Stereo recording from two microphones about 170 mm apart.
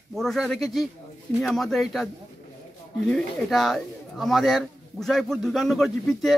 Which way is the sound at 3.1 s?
Centre (ahead or behind).